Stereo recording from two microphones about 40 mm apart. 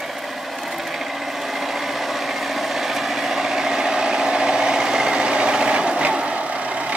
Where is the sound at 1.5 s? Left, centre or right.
Centre.